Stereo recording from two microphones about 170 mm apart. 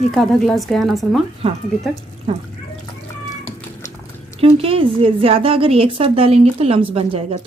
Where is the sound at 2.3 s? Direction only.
35° right (ahead or behind).